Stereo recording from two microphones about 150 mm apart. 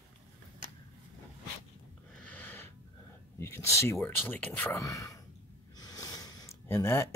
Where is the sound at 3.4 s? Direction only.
15° left (ahead or behind).